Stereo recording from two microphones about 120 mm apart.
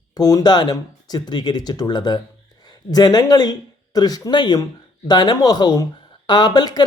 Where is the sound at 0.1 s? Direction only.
30° left (ahead or behind).